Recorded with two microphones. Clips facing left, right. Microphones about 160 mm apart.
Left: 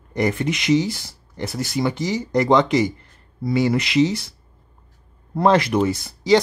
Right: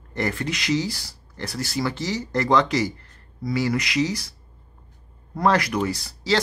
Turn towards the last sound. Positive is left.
turn(degrees=20)  # may be behind; listen again after turning